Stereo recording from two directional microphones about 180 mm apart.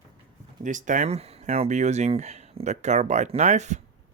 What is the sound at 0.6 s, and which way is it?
Speech, 45° right (ahead or behind).